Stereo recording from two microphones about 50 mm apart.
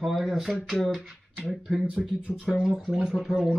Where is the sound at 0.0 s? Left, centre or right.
Centre.